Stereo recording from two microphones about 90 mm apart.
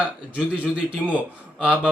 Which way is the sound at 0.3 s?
15° right (ahead or behind).